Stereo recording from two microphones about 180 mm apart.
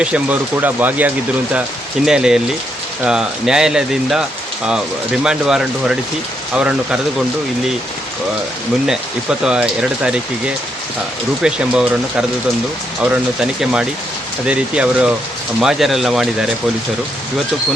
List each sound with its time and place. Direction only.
0.0 s speech: 5° right (ahead or behind)
9.4 s speech: 5° right (ahead or behind)